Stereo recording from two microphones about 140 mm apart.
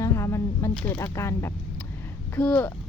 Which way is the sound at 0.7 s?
5° left (ahead or behind).